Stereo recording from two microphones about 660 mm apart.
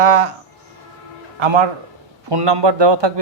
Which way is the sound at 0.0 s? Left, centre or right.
Right.